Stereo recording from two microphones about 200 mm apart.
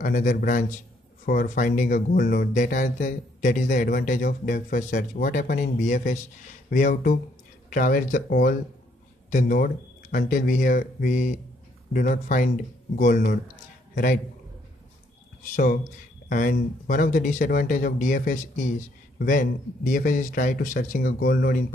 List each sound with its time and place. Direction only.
0.0 s speech: 40° left (ahead or behind)
15.5 s a man's voice: 40° left (ahead or behind)